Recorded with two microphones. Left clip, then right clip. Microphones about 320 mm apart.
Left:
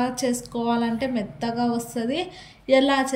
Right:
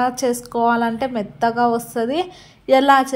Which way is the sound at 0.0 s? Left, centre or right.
Centre.